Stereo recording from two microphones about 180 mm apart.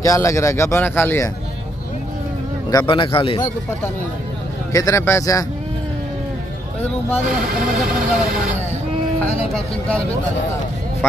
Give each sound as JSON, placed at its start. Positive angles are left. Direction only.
{"t": 0.0, "sound": "speech", "side_deg": 15}
{"t": 2.7, "sound": "speech", "side_deg": 25}
{"t": 7.2, "sound": "speech", "side_deg": -55}
{"t": 9.5, "sound": "speech", "side_deg": 5}